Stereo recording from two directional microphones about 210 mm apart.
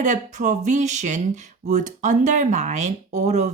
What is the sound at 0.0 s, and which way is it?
Speech, 35° right (ahead or behind).